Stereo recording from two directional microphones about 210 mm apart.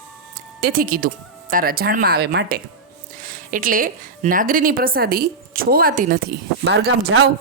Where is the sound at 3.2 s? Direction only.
40° right (ahead or behind).